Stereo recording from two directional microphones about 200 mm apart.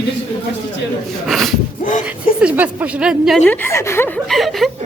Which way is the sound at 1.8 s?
40° left (ahead or behind).